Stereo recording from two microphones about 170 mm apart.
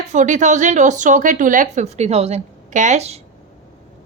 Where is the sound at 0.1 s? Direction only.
45° right (ahead or behind).